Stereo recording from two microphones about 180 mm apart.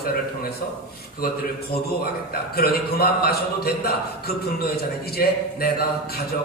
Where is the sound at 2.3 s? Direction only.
60° left (ahead or behind).